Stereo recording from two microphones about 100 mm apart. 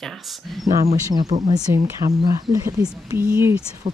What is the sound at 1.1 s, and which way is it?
Speech, 40° right (ahead or behind).